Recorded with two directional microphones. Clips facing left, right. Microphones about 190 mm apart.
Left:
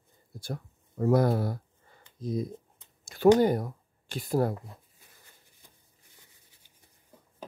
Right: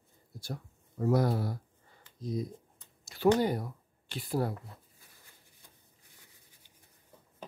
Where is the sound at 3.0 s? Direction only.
50° left (ahead or behind).